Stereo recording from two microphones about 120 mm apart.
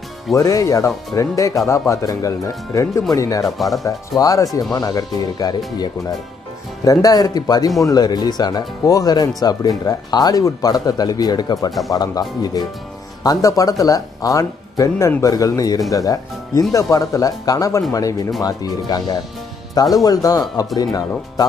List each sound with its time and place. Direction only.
0.3 s speech: 25° left (ahead or behind)
3.5 s speech: centre (ahead or behind)
4.2 s speech: 30° left (ahead or behind)
6.8 s speech: 30° left (ahead or behind)